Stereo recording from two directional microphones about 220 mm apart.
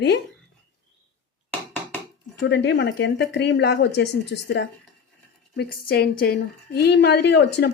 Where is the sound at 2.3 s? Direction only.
50° left (ahead or behind).